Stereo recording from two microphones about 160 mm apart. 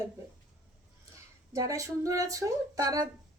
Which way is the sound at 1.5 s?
20° right (ahead or behind).